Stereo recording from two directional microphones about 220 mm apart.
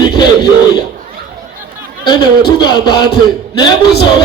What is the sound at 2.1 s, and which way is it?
Music, 20° left (ahead or behind).